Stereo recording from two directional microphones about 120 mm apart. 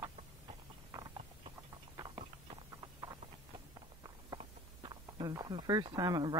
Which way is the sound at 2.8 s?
35° right (ahead or behind).